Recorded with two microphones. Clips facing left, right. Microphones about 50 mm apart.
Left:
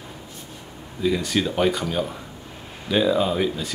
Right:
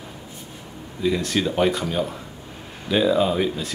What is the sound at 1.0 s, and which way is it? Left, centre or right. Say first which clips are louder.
Speech: even; centre.